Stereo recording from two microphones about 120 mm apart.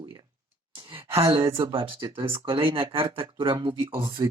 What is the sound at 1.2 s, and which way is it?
Speech, 50° right (ahead or behind).